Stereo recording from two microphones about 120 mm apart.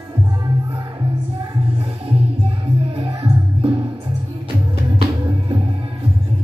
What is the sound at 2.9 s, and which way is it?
Music, 50° right (ahead or behind).